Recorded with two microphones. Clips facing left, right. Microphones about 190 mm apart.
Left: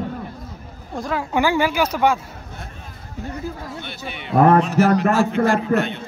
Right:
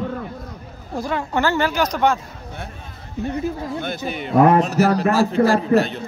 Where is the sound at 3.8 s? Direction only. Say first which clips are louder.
Right 7 dB; 40° right (ahead or behind).